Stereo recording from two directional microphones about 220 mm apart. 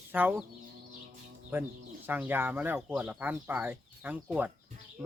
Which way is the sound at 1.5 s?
10° right (ahead or behind).